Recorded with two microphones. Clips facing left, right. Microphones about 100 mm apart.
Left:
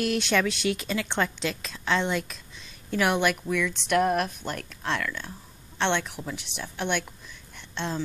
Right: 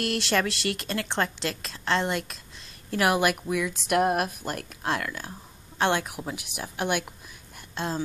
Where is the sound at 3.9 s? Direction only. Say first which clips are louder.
Even; 50° right (ahead or behind).